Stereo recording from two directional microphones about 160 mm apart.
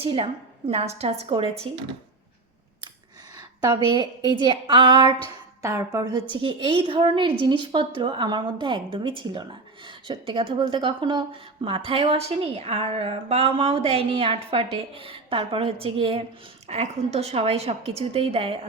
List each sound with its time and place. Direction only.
0.0 s a woman's voice: 35° right (ahead or behind)
4.3 s a woman's voice: 30° right (ahead or behind)